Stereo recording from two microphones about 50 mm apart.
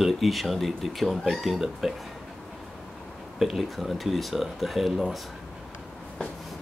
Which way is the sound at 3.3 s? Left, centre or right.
Centre.